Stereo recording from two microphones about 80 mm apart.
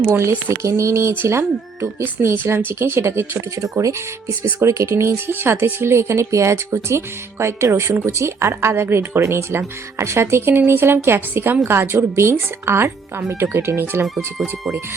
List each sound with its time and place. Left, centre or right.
0.0 s speech: right